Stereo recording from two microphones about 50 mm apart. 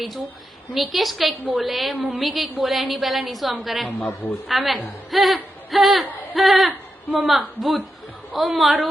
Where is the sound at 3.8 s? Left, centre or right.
Left.